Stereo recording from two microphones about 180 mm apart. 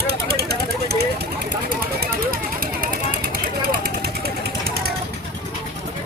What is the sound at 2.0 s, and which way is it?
Vehicle, 55° right (ahead or behind).